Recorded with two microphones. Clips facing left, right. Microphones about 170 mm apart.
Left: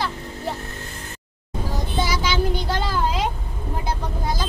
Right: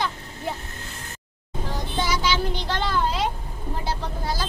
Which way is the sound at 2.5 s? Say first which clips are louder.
Left 1 dB; 10° left (ahead or behind).